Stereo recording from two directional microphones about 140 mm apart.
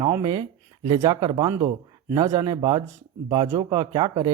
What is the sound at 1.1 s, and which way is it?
Speech, 40° right (ahead or behind).